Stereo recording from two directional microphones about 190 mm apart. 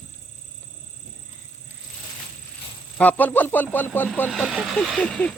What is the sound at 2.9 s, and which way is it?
Speech, 10° left (ahead or behind).